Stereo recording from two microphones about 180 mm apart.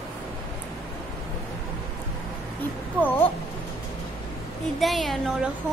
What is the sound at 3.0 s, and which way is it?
Speech, 10° left (ahead or behind).